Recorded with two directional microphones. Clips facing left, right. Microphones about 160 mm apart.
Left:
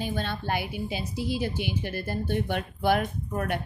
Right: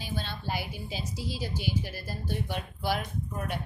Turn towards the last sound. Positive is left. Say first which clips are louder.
# left 5 dB
turn(degrees=60)  # may be behind; listen again after turning